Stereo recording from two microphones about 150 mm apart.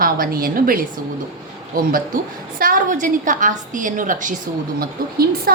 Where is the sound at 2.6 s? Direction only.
65° right (ahead or behind).